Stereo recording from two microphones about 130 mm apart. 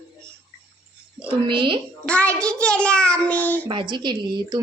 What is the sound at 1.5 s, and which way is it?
Speech, 40° right (ahead or behind).